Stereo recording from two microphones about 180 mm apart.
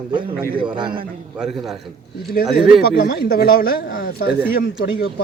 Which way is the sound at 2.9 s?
55° left (ahead or behind).